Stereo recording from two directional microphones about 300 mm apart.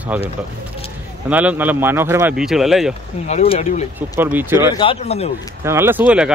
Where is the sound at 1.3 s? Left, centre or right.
Centre.